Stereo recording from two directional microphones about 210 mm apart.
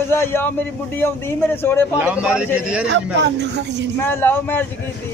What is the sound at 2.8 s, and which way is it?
Speech, 55° right (ahead or behind).